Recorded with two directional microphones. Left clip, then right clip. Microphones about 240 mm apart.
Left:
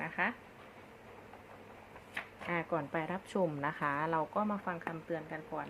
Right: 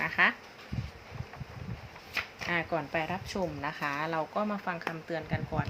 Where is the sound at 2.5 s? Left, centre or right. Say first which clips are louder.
Right 4 dB; centre.